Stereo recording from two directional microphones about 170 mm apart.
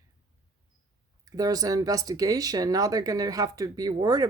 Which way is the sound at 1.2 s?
20° right (ahead or behind).